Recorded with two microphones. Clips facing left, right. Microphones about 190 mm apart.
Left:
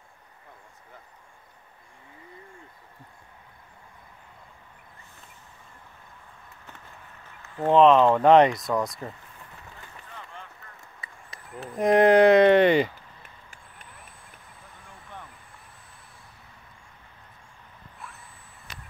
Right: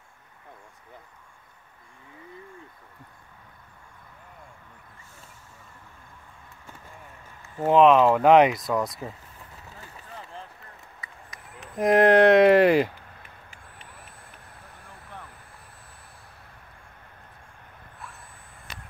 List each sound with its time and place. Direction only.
7.4 s speech: 5° right (ahead or behind)
10.1 s vehicle: 35° right (ahead or behind)
11.7 s speech: centre (ahead or behind)
18.0 s a sound: centre (ahead or behind)